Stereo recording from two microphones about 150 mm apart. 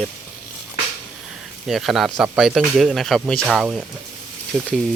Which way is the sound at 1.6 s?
Centre (ahead or behind).